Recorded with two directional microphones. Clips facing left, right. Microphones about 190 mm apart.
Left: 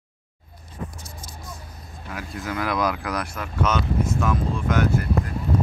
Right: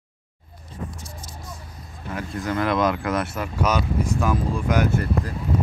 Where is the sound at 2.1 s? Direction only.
5° left (ahead or behind).